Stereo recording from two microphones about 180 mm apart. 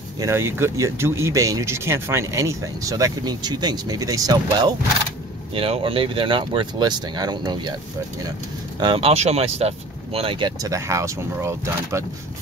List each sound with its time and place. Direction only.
0.2 s speech: 15° right (ahead or behind)
8.7 s speech: 25° right (ahead or behind)